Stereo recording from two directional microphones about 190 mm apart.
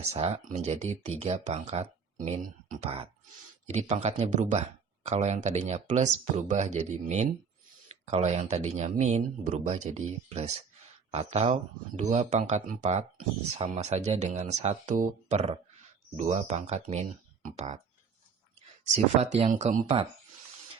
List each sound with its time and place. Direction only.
0.1 s speech: 30° right (ahead or behind)
19.4 s speech: 40° right (ahead or behind)